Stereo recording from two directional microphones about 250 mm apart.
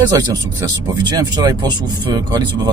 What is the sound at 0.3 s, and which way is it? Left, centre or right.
Speech, centre.